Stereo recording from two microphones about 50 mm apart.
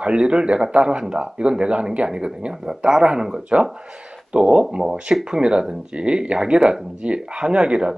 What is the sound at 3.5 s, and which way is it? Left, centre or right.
Speech, right.